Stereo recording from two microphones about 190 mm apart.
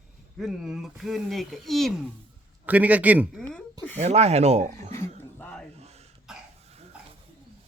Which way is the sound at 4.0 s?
35° right (ahead or behind).